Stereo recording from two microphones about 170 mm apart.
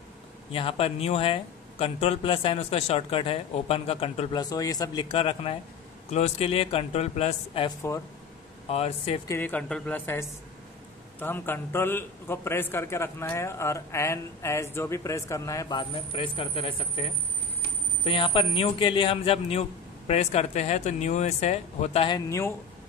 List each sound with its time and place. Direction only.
0.5 s speech: 30° left (ahead or behind)
9.3 s a man's voice: 10° left (ahead or behind); by 16.7 s 30° left (ahead or behind)
18.0 s speech: 30° left (ahead or behind)
22.1 s a man's voice: 15° left (ahead or behind)